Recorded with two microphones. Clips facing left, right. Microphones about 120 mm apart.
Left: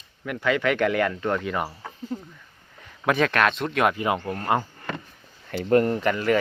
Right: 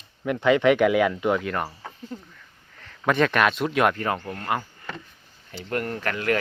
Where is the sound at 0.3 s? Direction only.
20° right (ahead or behind).